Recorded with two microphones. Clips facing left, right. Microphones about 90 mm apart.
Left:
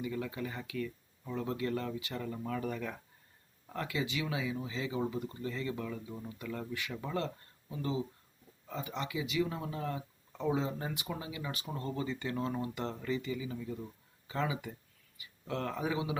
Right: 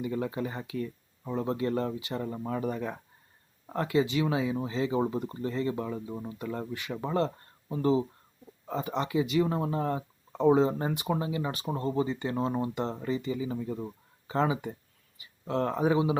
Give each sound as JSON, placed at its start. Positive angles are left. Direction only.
{"t": 0.0, "sound": "speech", "side_deg": -35}